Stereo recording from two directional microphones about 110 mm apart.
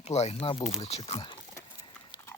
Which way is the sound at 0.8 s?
70° left (ahead or behind).